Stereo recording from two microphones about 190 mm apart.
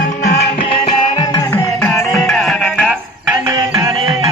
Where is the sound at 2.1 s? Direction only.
Centre (ahead or behind).